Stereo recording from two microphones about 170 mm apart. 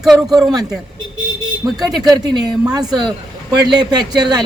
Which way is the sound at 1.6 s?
20° right (ahead or behind).